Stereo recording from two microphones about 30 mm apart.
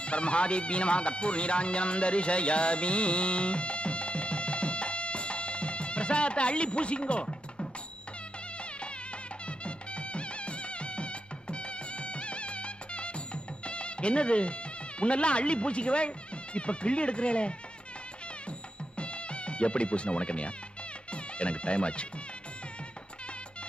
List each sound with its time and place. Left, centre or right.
0.0 s speech: left
9.5 s music: left
18.9 s music: left
21.1 s speech: left